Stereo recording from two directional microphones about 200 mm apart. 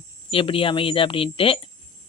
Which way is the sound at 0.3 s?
25° left (ahead or behind).